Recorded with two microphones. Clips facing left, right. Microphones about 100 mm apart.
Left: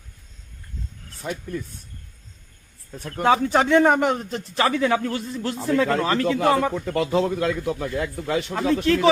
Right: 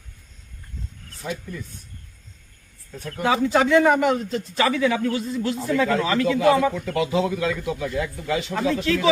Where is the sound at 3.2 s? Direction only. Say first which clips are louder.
Left 1 dB; 40° left (ahead or behind).